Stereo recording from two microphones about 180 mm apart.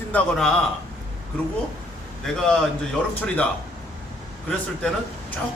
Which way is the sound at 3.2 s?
10° left (ahead or behind).